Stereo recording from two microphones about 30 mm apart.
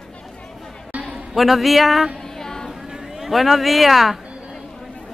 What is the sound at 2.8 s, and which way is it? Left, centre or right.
Speech, centre.